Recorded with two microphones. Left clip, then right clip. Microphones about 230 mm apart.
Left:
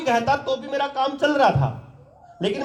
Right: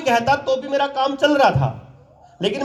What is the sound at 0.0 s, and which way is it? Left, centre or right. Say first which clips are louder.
Speech: right 3 dB; right.